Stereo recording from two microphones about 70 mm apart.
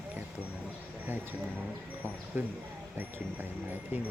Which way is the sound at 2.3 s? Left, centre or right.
Right.